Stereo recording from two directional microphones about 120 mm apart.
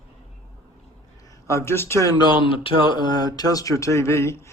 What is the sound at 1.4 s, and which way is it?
Speech, 25° left (ahead or behind).